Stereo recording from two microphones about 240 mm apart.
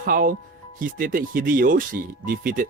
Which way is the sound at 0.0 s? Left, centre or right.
Right.